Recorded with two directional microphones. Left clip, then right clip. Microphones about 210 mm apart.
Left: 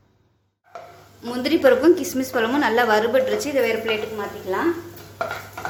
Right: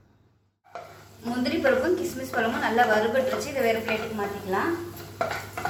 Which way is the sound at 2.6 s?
55° left (ahead or behind).